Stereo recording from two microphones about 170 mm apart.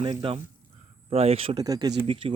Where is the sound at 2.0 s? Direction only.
30° right (ahead or behind).